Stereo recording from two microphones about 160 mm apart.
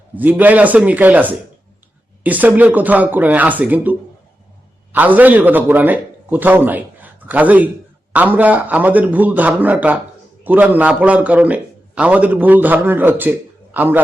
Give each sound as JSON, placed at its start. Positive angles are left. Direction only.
{"t": 0.2, "sound": "a man's voice", "side_deg": -10}